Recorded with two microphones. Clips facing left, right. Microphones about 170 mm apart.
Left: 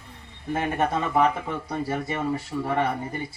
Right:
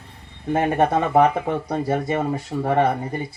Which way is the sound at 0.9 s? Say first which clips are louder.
Right 5 dB; 55° right (ahead or behind).